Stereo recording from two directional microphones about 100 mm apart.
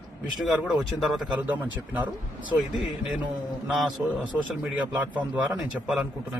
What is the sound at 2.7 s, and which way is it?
Speech, centre (ahead or behind).